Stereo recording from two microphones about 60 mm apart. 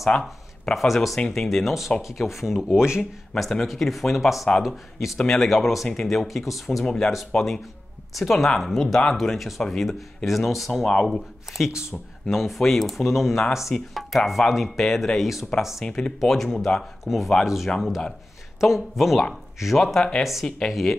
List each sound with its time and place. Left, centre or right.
0.2 s speech: centre
3.0 s speech: centre
15.8 s speech: centre
17.7 s speech: centre
18.6 s speech: centre
19.8 s speech: centre